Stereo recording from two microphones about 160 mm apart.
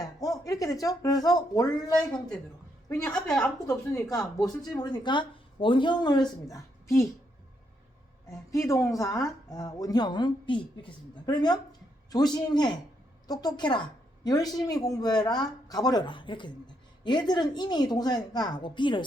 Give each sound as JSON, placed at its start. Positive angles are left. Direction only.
{"t": 0.2, "sound": "speech", "side_deg": 20}
{"t": 3.1, "sound": "a woman's voice", "side_deg": 5}
{"t": 3.7, "sound": "speech", "side_deg": 20}
{"t": 8.5, "sound": "speech", "side_deg": 20}